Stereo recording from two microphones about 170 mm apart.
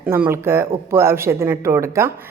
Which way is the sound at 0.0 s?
10° right (ahead or behind).